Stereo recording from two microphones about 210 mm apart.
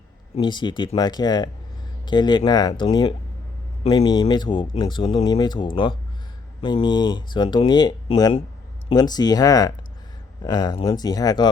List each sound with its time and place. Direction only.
0.3 s speech: 20° left (ahead or behind)